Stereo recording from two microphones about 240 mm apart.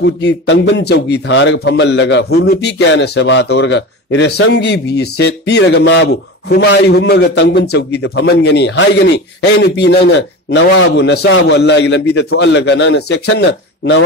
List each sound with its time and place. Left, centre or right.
0.0 s a man's voice: left